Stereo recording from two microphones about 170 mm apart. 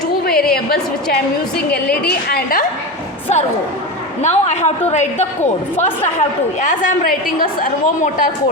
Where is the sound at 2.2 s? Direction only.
65° left (ahead or behind).